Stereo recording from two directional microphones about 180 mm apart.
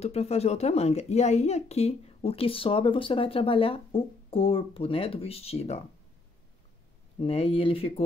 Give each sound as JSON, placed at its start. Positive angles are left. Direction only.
{"t": 0.0, "sound": "a woman's voice", "side_deg": 35}
{"t": 7.2, "sound": "a woman's voice", "side_deg": 30}